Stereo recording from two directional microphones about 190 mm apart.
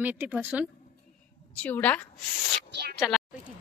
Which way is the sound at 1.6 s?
10° left (ahead or behind).